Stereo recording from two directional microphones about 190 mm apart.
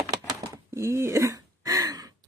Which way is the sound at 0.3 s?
15° right (ahead or behind).